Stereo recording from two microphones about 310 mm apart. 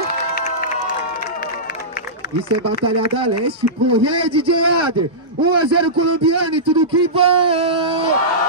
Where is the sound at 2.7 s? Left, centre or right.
Right.